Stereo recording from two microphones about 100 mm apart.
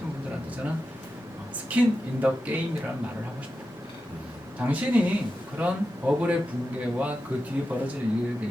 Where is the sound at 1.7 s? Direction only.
15° right (ahead or behind).